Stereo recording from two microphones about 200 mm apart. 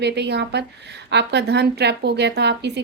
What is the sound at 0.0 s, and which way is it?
Speech, 55° right (ahead or behind).